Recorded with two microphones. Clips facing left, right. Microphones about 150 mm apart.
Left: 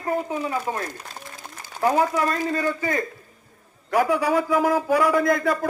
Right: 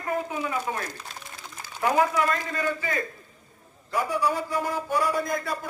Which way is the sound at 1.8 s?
35° left (ahead or behind).